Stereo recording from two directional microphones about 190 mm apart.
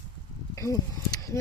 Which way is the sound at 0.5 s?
20° left (ahead or behind).